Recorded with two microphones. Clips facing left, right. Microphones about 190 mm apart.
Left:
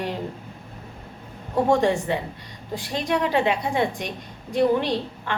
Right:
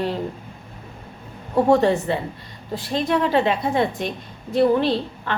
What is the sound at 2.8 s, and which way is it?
A woman's voice, 15° left (ahead or behind).